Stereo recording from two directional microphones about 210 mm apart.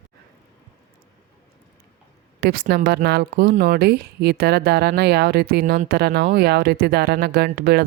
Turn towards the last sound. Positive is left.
turn(degrees=-45)  # may be behind; listen again after turning